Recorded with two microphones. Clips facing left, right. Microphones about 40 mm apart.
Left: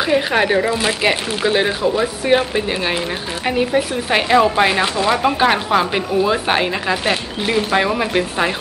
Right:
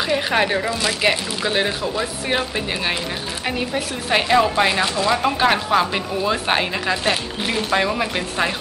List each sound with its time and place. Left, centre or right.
0.0 s a woman's voice: centre
0.7 s speech: left
1.0 s a woman's voice: centre